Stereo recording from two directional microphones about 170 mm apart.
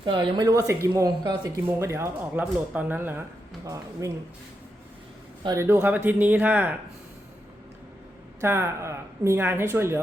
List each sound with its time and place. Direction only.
0.0 s speech: 30° right (ahead or behind); by 3.2 s 10° right (ahead or behind)
5.4 s a man's voice: 25° right (ahead or behind)
5.6 s speech: 10° right (ahead or behind)
8.4 s speech: 15° right (ahead or behind)